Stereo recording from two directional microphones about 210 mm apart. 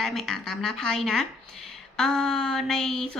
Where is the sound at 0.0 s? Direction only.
Centre (ahead or behind).